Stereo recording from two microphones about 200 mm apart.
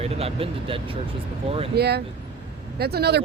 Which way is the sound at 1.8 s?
55° right (ahead or behind).